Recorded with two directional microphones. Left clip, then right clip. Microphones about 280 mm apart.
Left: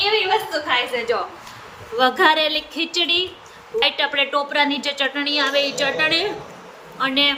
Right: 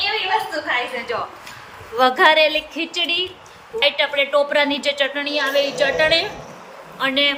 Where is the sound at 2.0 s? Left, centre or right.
Centre.